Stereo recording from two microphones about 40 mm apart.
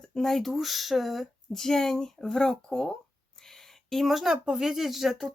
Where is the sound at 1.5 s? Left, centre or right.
Centre.